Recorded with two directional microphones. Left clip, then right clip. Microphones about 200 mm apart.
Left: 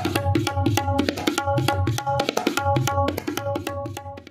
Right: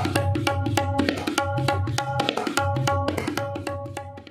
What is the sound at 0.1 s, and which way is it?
Music, 40° left (ahead or behind).